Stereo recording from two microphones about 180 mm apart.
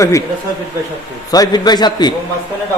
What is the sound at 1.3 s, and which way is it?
Speech, 20° left (ahead or behind).